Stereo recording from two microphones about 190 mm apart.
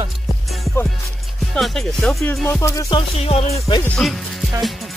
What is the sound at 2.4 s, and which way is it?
Music, 15° left (ahead or behind).